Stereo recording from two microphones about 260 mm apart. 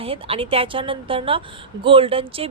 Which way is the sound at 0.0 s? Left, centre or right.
Right.